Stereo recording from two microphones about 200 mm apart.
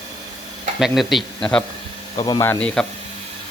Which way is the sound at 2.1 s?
20° left (ahead or behind).